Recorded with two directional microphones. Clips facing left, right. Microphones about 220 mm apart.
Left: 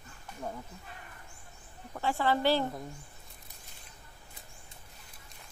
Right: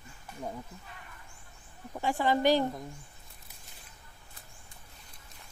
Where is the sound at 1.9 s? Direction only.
15° right (ahead or behind).